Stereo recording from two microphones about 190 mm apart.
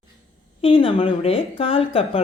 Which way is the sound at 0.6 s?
30° left (ahead or behind).